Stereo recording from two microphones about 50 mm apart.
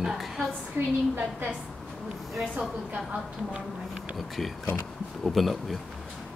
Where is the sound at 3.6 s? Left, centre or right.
Right.